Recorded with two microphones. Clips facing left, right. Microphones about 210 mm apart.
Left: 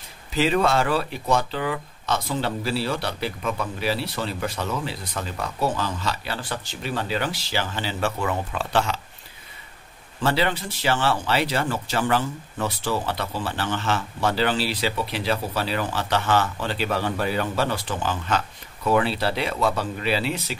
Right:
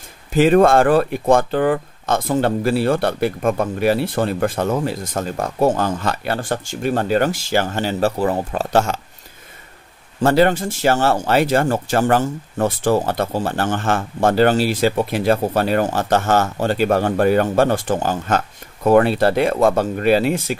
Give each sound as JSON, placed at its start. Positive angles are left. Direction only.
{"t": 0.3, "sound": "speech", "side_deg": -50}
{"t": 10.2, "sound": "speech", "side_deg": -45}